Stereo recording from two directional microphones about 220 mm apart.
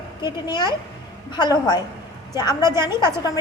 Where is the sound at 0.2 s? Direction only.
20° left (ahead or behind).